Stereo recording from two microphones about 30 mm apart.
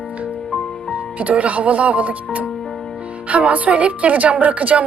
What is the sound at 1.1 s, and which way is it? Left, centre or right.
Speech, right.